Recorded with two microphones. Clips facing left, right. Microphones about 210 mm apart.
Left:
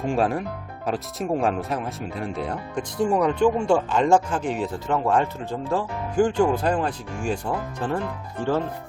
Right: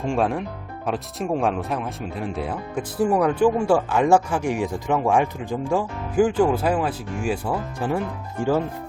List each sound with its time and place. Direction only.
0.0 s speech: centre (ahead or behind)